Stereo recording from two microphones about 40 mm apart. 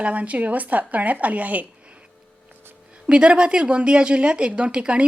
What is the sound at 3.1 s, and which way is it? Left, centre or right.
A woman's voice, right.